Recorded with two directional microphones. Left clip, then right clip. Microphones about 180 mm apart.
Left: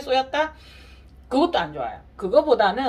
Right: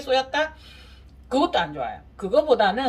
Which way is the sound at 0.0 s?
40° left (ahead or behind).